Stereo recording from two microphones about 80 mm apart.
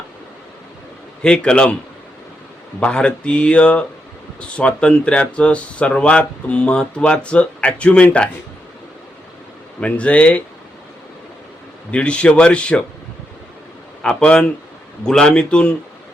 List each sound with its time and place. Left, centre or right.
1.2 s speech: centre
2.8 s speech: centre
9.8 s speech: centre
11.9 s speech: centre
14.0 s speech: centre